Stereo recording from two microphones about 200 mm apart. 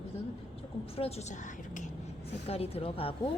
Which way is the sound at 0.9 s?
30° left (ahead or behind).